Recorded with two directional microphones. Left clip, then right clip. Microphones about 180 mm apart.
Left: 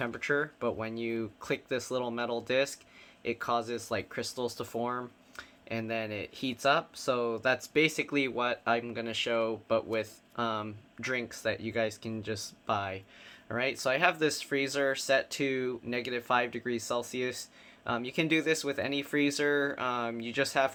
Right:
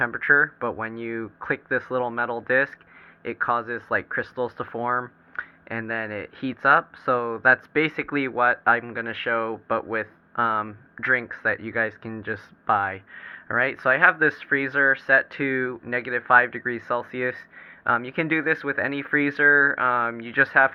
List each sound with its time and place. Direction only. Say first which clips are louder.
0.0 s speech: right 12 dB; 25° right (ahead or behind)